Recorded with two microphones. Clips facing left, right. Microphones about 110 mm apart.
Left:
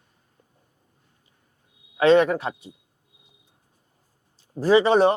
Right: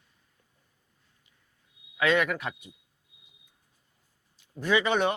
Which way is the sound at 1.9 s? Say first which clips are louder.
Left 9 dB; 35° left (ahead or behind).